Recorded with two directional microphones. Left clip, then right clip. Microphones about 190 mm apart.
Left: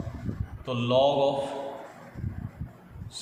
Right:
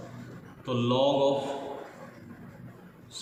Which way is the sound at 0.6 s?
35° left (ahead or behind).